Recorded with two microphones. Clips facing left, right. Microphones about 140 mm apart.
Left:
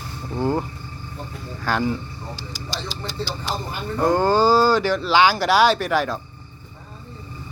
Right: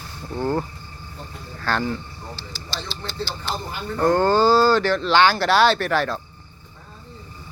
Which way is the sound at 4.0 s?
10° left (ahead or behind).